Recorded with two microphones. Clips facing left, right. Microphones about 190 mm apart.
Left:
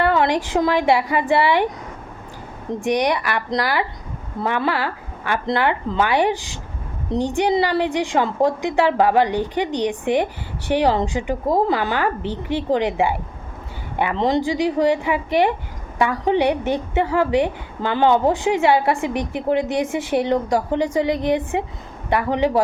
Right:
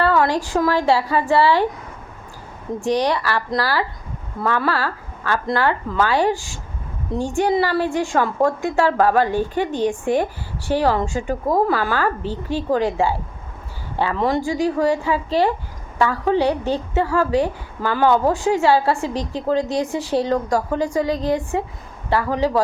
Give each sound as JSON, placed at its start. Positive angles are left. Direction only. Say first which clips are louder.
{"t": 0.0, "sound": "a woman's voice", "louder": "even", "side_deg": 20}
{"t": 2.8, "sound": "a woman's voice", "louder": "even", "side_deg": 15}